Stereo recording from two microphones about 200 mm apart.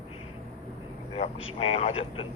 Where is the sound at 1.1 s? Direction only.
30° left (ahead or behind).